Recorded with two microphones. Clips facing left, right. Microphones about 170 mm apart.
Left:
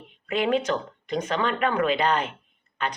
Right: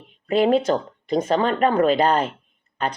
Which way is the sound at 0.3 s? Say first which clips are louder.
Right 6 dB; 35° right (ahead or behind).